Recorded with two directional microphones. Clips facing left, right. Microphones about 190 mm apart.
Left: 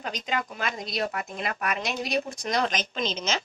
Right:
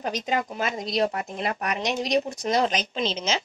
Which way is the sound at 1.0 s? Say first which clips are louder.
Right 4 dB; 30° right (ahead or behind).